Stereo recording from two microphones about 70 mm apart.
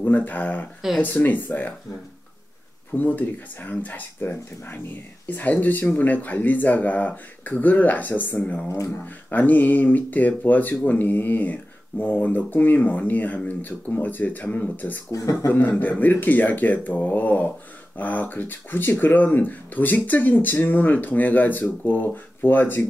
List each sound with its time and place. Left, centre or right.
0.0 s speech: left
2.9 s speech: left
8.6 s speech: left
9.0 s speech: left
15.0 s speech: left
15.4 s a man's voice: left